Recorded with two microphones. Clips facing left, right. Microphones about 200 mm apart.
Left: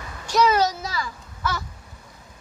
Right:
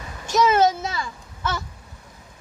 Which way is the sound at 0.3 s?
20° right (ahead or behind).